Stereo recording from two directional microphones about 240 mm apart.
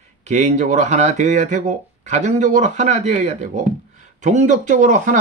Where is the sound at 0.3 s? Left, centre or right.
Right.